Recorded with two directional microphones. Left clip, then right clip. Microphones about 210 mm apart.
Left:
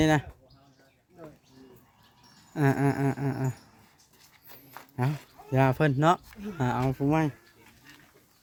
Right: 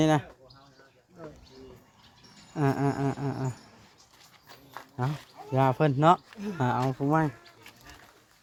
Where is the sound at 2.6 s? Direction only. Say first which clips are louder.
Left 1 dB; 25° left (ahead or behind).